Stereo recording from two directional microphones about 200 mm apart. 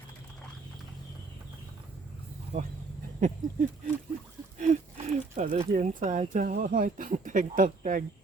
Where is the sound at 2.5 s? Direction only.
30° right (ahead or behind).